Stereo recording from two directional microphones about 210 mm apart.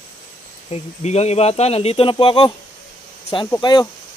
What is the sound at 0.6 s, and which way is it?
Speech, 30° left (ahead or behind).